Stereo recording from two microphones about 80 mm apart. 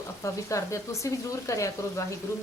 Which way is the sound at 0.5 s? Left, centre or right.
Left.